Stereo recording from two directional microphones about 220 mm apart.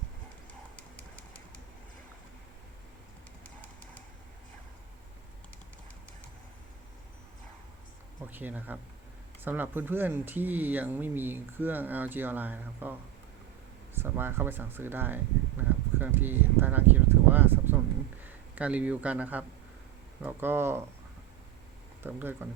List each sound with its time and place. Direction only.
8.3 s speech: 10° right (ahead or behind)
22.0 s speech: 10° right (ahead or behind)